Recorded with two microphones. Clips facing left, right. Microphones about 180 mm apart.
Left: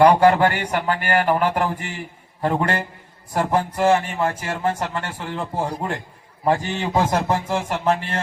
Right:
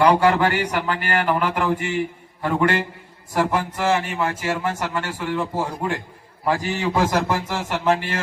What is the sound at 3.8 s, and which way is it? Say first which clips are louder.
Speech: left 4 dB; 35° left (ahead or behind).